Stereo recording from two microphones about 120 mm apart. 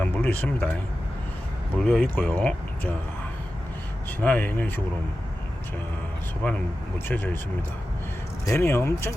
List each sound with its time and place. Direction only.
0.0 s music: 15° left (ahead or behind)
1.8 s speech: 10° left (ahead or behind)
4.2 s speech: 15° left (ahead or behind)
6.4 s speech: 15° left (ahead or behind)
8.4 s speech: 20° left (ahead or behind)